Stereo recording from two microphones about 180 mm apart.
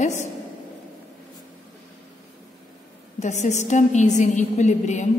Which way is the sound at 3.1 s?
40° left (ahead or behind).